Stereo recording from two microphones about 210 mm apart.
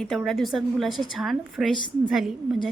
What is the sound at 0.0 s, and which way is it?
A woman's voice, centre (ahead or behind).